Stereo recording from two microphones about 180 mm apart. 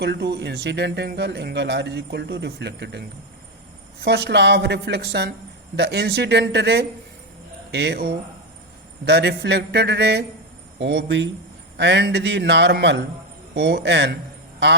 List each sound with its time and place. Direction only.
0.0 s speech: 70° right (ahead or behind)
4.0 s speech: 70° right (ahead or behind)